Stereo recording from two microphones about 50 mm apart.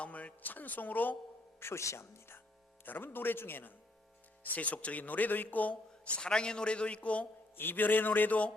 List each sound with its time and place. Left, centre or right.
0.0 s speech: left
1.5 s speech: left
2.8 s speech: left
4.5 s speech: left
6.1 s a man's voice: centre
7.5 s speech: left